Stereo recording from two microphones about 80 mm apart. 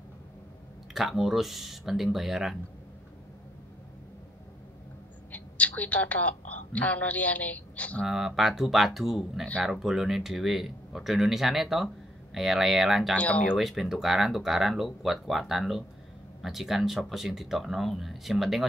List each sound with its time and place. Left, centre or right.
0.9 s speech: centre
5.3 s a woman's voice: centre
8.0 s speech: centre
13.1 s speech: centre
13.6 s speech: centre